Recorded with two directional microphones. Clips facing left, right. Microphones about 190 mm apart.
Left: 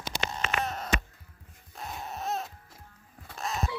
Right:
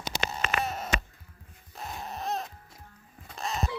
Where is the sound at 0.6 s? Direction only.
5° right (ahead or behind).